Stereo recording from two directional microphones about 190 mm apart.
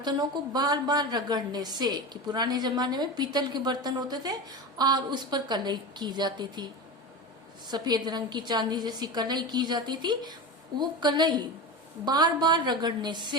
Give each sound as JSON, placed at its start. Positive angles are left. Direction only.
{"t": 0.0, "sound": "a woman's voice", "side_deg": -20}
{"t": 7.7, "sound": "a woman's voice", "side_deg": -20}